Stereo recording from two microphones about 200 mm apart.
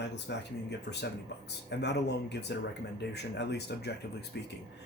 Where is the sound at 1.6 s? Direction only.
60° left (ahead or behind).